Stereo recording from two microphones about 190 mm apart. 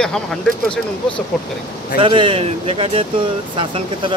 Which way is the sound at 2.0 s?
25° right (ahead or behind).